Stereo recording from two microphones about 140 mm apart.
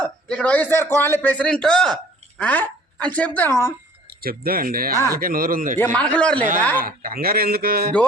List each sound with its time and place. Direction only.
0.0 s a man's voice: 5° left (ahead or behind)
4.2 s a man's voice: 90° right
5.8 s a man's voice: 10° left (ahead or behind)
6.8 s a man's voice: 90° right